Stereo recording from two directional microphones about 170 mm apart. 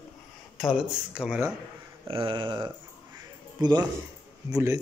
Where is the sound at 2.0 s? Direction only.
30° right (ahead or behind).